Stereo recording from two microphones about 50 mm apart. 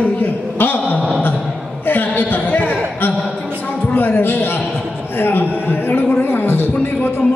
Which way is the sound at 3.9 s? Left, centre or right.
Left.